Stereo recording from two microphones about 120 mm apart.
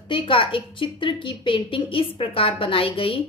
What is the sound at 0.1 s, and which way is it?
A woman's voice, 45° left (ahead or behind).